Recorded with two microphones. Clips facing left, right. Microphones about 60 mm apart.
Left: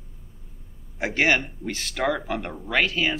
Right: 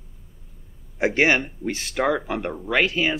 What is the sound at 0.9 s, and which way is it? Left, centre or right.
Speech, centre.